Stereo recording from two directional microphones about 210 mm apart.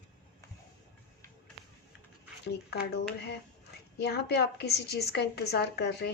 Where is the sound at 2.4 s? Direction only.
50° left (ahead or behind).